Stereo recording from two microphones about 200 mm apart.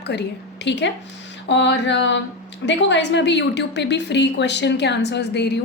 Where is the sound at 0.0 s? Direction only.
55° left (ahead or behind).